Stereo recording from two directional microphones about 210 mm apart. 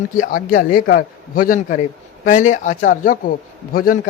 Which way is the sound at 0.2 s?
40° left (ahead or behind).